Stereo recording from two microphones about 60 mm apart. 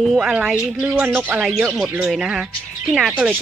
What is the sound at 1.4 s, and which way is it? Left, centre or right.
Speech, centre.